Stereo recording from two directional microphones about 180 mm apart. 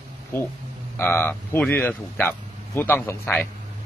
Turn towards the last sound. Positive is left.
turn(degrees=10)  # may be behind; listen again after turning